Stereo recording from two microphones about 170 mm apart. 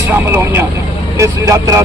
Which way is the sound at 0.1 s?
15° right (ahead or behind).